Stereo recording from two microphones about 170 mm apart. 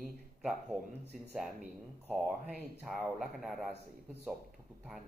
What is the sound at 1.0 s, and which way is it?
Speech, 75° right (ahead or behind).